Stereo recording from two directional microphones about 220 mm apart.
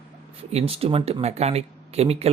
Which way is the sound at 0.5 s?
25° right (ahead or behind).